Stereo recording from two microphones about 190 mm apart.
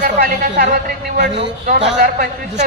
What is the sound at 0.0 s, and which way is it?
A woman's voice, 45° right (ahead or behind).